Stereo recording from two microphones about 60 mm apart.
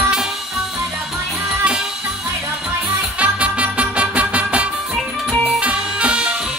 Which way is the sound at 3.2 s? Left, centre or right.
Right.